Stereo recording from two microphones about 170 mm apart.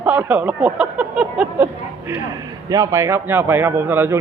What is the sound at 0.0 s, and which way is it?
A man's voice, 10° right (ahead or behind).